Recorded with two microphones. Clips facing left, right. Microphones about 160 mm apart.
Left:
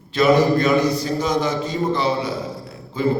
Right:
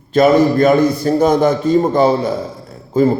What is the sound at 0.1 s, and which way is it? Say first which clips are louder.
A man's voice: right 5 dB; 50° right (ahead or behind).